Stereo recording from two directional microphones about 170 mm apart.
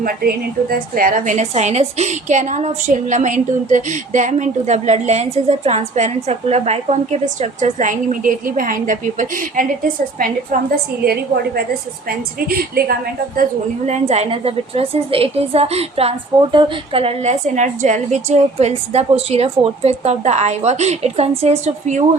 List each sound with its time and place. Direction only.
0.0 s a woman's voice: 60° right (ahead or behind)
11.0 s a woman's voice: 65° right (ahead or behind)
13.8 s a woman's voice: 40° right (ahead or behind)